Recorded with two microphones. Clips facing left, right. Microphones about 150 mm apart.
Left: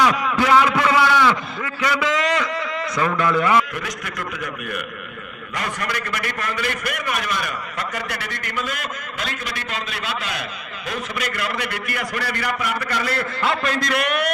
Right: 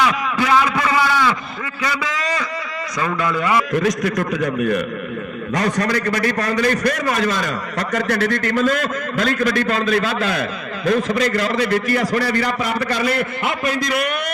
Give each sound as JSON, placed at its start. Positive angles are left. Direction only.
{"t": 0.0, "sound": "a sound", "side_deg": -15}
{"t": 3.0, "sound": "a man's voice", "side_deg": -10}
{"t": 4.3, "sound": "a man's voice", "side_deg": -25}
{"t": 6.6, "sound": "a man's voice", "side_deg": -40}
{"t": 7.3, "sound": "a man's voice", "side_deg": -90}
{"t": 8.3, "sound": "a man's voice", "side_deg": -50}